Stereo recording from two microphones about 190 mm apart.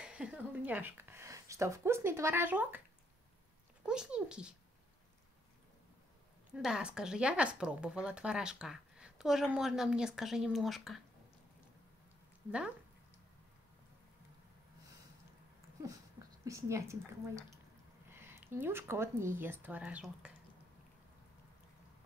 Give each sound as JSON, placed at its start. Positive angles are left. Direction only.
{"t": 0.0, "sound": "speech", "side_deg": -5}
{"t": 3.8, "sound": "a woman's voice", "side_deg": -5}
{"t": 6.5, "sound": "a woman's voice", "side_deg": -5}
{"t": 12.4, "sound": "a woman's voice", "side_deg": -5}
{"t": 16.4, "sound": "a woman's voice", "side_deg": -15}